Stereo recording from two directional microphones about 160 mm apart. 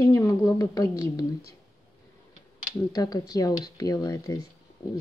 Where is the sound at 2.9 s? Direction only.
25° left (ahead or behind).